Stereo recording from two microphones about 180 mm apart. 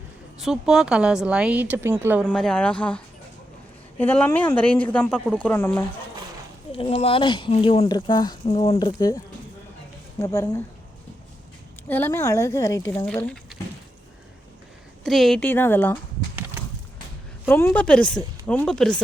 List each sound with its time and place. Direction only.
0.3 s speech: centre (ahead or behind)
2.2 s a woman's voice: 5° left (ahead or behind)
6.7 s speech: 30° left (ahead or behind)
9.0 s speech: 20° left (ahead or behind)
11.9 s a woman's voice: 10° left (ahead or behind)
13.2 s a sound: centre (ahead or behind)
15.0 s speech: centre (ahead or behind)
15.4 s a woman's voice: 10° left (ahead or behind)
17.5 s speech: 10° left (ahead or behind)